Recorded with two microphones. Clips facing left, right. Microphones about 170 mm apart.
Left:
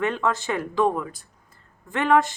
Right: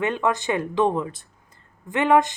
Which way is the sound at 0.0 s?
20° right (ahead or behind).